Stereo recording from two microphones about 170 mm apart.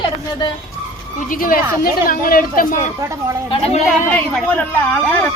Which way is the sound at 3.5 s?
35° left (ahead or behind).